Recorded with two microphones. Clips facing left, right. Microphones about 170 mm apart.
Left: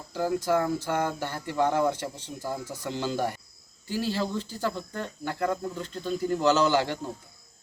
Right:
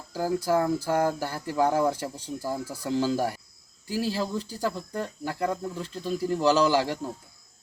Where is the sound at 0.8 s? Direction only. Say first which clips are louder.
Right 3 dB; 35° right (ahead or behind).